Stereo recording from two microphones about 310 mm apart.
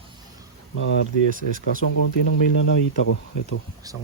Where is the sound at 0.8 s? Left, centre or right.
Left.